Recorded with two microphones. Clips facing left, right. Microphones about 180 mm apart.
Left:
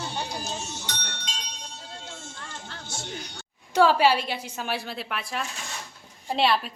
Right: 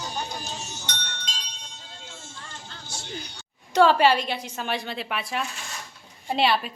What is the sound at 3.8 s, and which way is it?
A woman's voice, 10° left (ahead or behind).